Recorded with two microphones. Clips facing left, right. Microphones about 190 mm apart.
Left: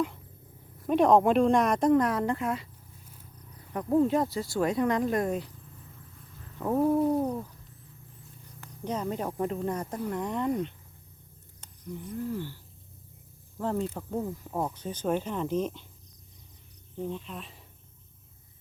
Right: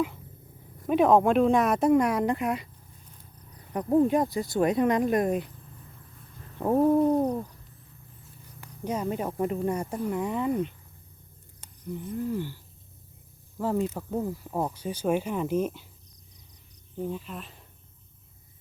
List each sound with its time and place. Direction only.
0.8 s speech: 5° right (ahead or behind)
3.7 s speech: 20° right (ahead or behind)
6.6 s a sound: 30° right (ahead or behind)
7.1 s owl: 20° right (ahead or behind)
8.6 s speech: 10° right (ahead or behind)
11.6 s a sound: 15° right (ahead or behind)
13.6 s speech: 5° right (ahead or behind)
17.0 s speech: 5° right (ahead or behind)